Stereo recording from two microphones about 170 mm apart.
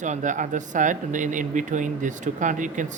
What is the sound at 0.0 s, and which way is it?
Speech, 45° right (ahead or behind).